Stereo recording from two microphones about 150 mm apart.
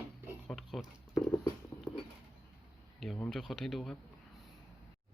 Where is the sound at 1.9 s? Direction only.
5° right (ahead or behind).